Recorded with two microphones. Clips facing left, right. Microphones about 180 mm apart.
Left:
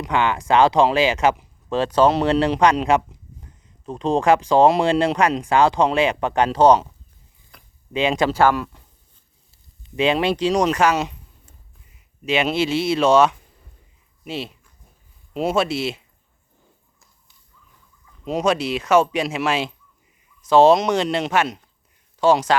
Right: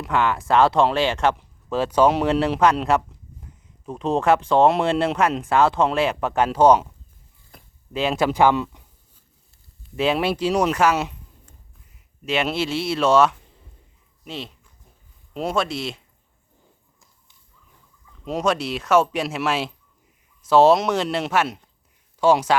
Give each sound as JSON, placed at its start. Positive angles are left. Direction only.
{"t": 0.0, "sound": "speech", "side_deg": 0}
{"t": 7.9, "sound": "speech", "side_deg": -5}
{"t": 8.3, "sound": "speech", "side_deg": -15}
{"t": 9.5, "sound": "speech", "side_deg": 0}
{"t": 11.4, "sound": "a sound", "side_deg": 0}
{"t": 14.3, "sound": "speech", "side_deg": 5}
{"t": 18.3, "sound": "speech", "side_deg": 0}